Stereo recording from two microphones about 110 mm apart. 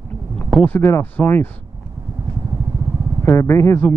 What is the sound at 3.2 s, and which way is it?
Speech, 20° left (ahead or behind).